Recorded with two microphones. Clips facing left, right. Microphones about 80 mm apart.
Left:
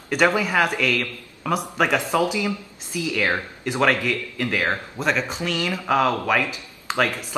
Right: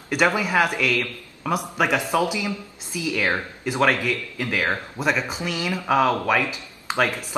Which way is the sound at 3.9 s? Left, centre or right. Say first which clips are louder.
Left 1 dB; centre.